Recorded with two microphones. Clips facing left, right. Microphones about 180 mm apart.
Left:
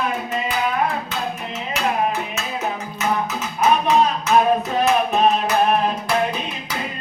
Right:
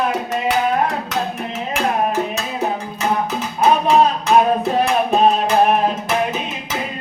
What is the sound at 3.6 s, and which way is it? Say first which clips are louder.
Music: right 3 dB; 30° right (ahead or behind).